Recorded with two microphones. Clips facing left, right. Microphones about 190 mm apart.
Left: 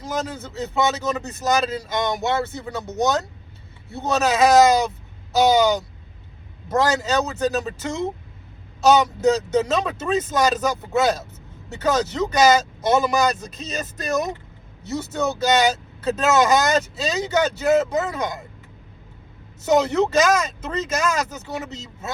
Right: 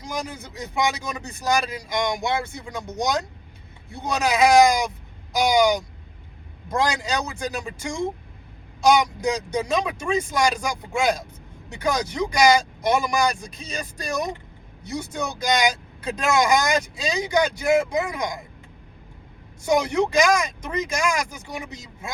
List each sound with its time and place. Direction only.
0.0 s speech: 15° right (ahead or behind)
19.6 s speech: 15° right (ahead or behind)